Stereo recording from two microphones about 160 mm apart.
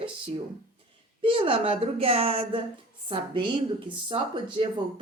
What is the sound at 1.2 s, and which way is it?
Speech, 35° right (ahead or behind).